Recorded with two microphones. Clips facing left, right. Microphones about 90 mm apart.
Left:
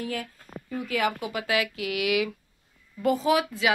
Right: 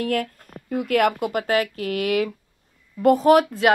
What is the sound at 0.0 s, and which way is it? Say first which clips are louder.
Speech: right 9 dB; 60° right (ahead or behind).